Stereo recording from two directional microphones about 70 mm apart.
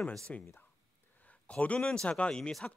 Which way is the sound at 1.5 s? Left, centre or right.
Centre.